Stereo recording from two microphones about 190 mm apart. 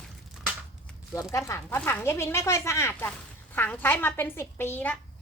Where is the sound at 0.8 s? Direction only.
15° left (ahead or behind).